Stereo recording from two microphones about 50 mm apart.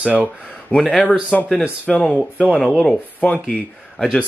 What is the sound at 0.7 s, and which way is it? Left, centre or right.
Speech, left.